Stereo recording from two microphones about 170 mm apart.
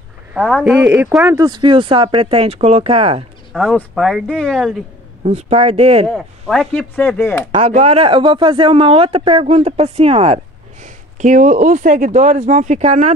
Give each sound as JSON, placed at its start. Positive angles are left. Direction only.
{"t": 0.3, "sound": "speech", "side_deg": -5}
{"t": 3.5, "sound": "speech", "side_deg": 0}
{"t": 5.2, "sound": "speech", "side_deg": -40}
{"t": 6.0, "sound": "speech", "side_deg": 0}
{"t": 7.5, "sound": "speech", "side_deg": -40}